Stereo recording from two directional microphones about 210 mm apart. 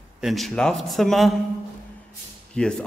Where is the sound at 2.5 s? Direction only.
5° left (ahead or behind).